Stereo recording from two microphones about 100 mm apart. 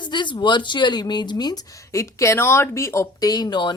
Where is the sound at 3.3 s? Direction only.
40° left (ahead or behind).